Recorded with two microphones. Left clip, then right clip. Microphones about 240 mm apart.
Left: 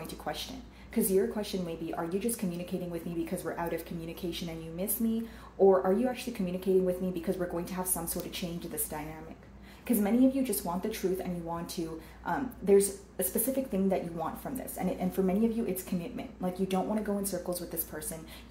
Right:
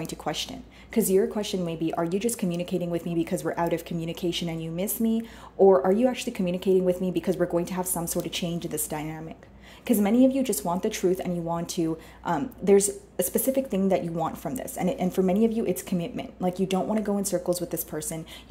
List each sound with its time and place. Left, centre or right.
0.0 s speech: right